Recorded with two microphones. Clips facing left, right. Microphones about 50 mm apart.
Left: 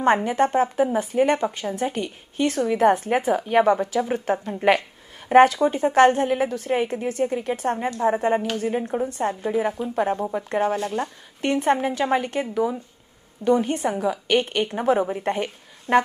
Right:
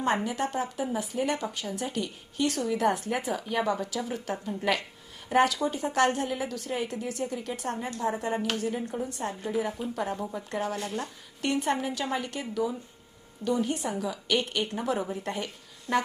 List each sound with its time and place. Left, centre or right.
0.3 s a woman's voice: left